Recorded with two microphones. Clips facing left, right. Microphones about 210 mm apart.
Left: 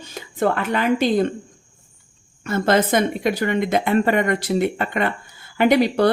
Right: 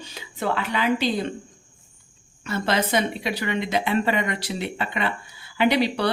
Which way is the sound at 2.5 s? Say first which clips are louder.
Left 6 dB; 50° left (ahead or behind).